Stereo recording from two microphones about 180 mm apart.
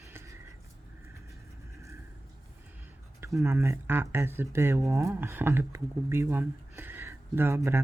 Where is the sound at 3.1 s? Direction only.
15° right (ahead or behind).